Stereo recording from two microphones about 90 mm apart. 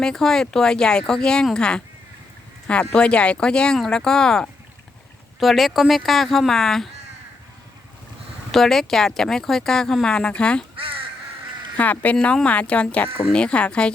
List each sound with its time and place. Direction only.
0.0 s speech: 5° left (ahead or behind)
8.5 s speech: 5° left (ahead or behind)
11.8 s speech: 15° left (ahead or behind)